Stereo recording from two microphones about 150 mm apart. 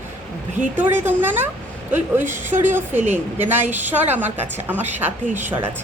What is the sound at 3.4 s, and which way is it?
A woman's voice, 15° right (ahead or behind).